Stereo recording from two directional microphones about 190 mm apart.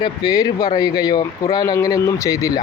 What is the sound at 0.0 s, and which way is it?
Speech, 20° left (ahead or behind).